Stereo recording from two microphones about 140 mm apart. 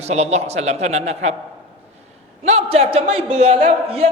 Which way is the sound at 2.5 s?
45° right (ahead or behind).